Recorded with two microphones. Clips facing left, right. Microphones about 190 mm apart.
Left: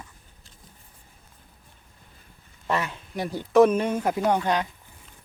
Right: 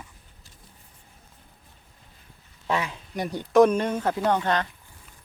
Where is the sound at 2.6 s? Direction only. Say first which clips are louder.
Even; centre (ahead or behind).